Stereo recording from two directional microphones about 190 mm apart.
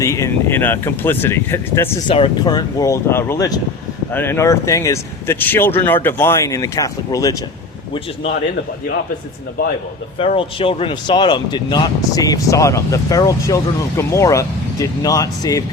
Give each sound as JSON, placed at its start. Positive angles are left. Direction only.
{"t": 0.0, "sound": "speech", "side_deg": 15}
{"t": 2.0, "sound": "speech", "side_deg": 25}
{"t": 10.2, "sound": "speech", "side_deg": 30}